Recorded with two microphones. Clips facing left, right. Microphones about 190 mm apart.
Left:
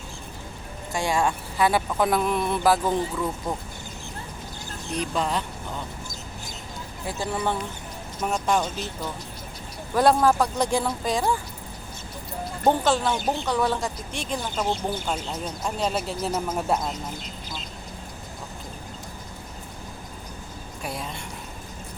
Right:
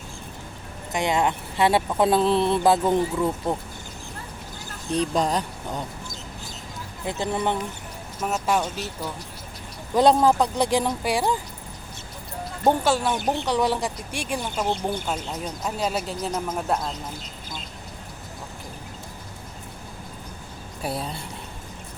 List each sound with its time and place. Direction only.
0.9 s speech: 20° right (ahead or behind)
4.9 s speech: 40° right (ahead or behind)
7.0 s speech: 20° right (ahead or behind)
8.2 s speech: 5° right (ahead or behind)
9.9 s speech: 20° right (ahead or behind)
12.6 s speech: 5° right (ahead or behind)
20.8 s speech: 30° right (ahead or behind)